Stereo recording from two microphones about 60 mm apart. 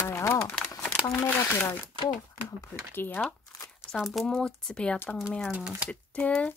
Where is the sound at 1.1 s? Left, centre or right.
Left.